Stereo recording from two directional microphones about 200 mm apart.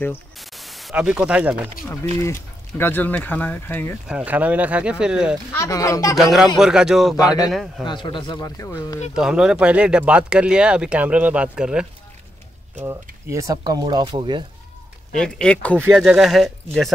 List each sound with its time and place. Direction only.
0.4 s a sound: centre (ahead or behind)
2.8 s speech: 10° left (ahead or behind)
4.1 s speech: 5° right (ahead or behind)
5.5 s speech: 15° left (ahead or behind)
6.1 s speech: centre (ahead or behind)
7.8 s speech: 25° left (ahead or behind)
9.1 s speech: 5° right (ahead or behind)
12.8 s speech: 15° right (ahead or behind)
15.1 s speech: 5° left (ahead or behind)
15.8 s speech: 5° right (ahead or behind)